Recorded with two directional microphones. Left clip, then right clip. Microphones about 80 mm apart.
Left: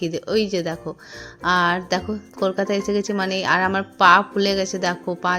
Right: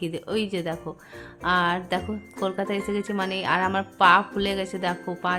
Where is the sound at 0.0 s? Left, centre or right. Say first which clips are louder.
Left 6 dB; left.